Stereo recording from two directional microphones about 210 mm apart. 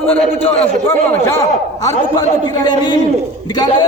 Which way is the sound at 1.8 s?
20° left (ahead or behind).